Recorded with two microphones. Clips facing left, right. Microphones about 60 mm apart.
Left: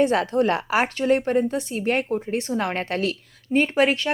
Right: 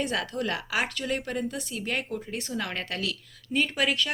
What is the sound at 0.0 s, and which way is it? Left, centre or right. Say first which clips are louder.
Speech: left 10 dB; left.